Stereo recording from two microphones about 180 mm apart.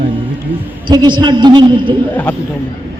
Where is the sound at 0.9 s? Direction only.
25° right (ahead or behind).